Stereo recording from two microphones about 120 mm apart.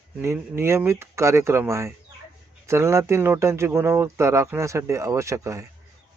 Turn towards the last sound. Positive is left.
turn(degrees=-25)  # may be behind; listen again after turning